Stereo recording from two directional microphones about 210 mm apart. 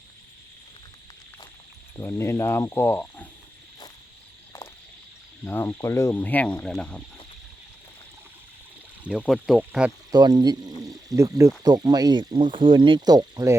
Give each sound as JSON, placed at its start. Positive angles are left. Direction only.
{"t": 2.0, "sound": "speech", "side_deg": 10}
{"t": 5.5, "sound": "speech", "side_deg": 10}
{"t": 9.0, "sound": "speech", "side_deg": -5}
{"t": 10.1, "sound": "speech", "side_deg": -20}